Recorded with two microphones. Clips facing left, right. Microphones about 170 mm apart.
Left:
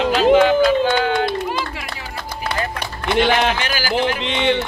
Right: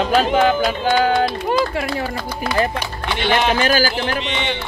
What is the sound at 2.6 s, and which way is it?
Speech, 35° right (ahead or behind).